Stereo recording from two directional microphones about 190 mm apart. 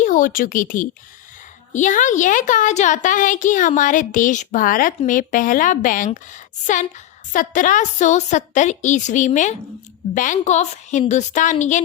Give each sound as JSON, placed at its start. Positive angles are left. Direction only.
{"t": 0.0, "sound": "a woman's voice", "side_deg": 45}
{"t": 7.3, "sound": "a woman's voice", "side_deg": 45}